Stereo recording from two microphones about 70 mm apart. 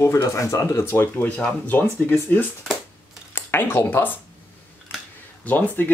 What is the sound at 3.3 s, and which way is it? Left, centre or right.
Speech, left.